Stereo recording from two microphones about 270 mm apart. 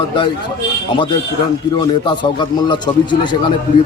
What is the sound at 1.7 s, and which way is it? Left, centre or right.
A man's voice, centre.